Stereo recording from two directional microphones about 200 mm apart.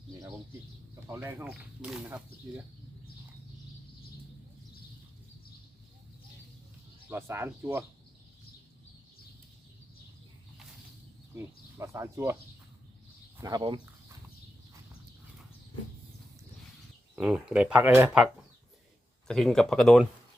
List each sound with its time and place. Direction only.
1.0 s speech: 10° right (ahead or behind)
7.1 s speech: 10° right (ahead or behind)
11.3 s speech: 15° right (ahead or behind)
13.4 s speech: 20° right (ahead or behind)
17.2 s speech: 5° right (ahead or behind)
19.3 s speech: centre (ahead or behind)